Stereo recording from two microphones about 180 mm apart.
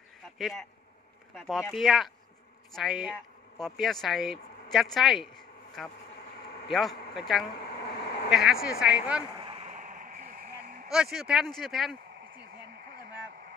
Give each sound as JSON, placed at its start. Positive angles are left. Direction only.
{"t": 0.4, "sound": "speech", "side_deg": 0}
{"t": 8.0, "sound": "vehicle", "side_deg": 65}
{"t": 8.3, "sound": "speech", "side_deg": 0}
{"t": 9.4, "sound": "a sound", "side_deg": -35}
{"t": 10.9, "sound": "speech", "side_deg": 0}